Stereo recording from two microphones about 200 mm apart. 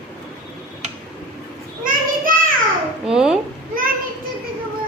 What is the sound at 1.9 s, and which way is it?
Child singing, 45° right (ahead or behind).